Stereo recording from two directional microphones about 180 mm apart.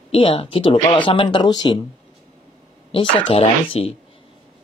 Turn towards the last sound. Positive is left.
turn(degrees=35)  # may be behind; listen again after turning